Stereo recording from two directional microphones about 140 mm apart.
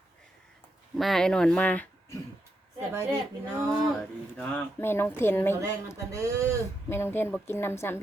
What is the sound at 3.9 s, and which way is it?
Speech, 5° left (ahead or behind).